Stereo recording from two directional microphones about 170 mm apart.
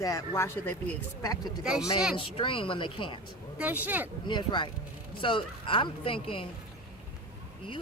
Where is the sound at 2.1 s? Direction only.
30° left (ahead or behind).